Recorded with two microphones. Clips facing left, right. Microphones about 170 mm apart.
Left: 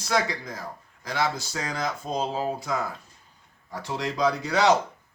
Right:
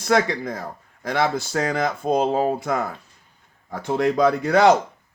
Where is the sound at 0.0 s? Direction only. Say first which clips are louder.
Right 6 dB; 55° right (ahead or behind).